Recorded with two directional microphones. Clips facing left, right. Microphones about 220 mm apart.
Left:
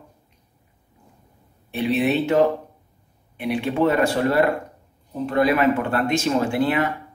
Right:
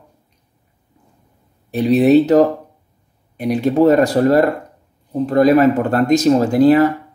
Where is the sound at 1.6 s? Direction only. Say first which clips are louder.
Right 9 dB; 40° right (ahead or behind).